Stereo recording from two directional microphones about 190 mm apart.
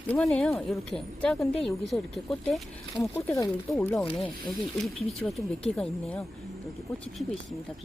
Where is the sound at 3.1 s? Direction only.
15° left (ahead or behind).